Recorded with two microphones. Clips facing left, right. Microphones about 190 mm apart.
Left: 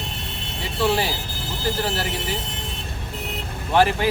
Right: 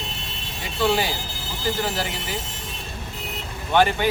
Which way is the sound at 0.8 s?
Centre (ahead or behind).